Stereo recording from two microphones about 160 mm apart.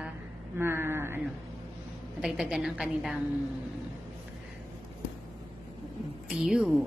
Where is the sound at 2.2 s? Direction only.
5° right (ahead or behind).